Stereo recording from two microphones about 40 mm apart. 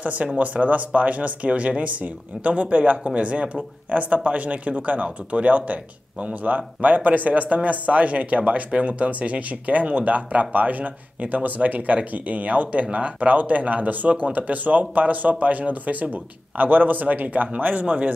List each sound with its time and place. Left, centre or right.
0.0 s speech: right